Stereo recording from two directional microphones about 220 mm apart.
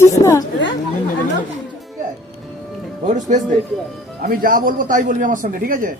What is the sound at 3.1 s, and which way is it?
A man's voice, 35° right (ahead or behind).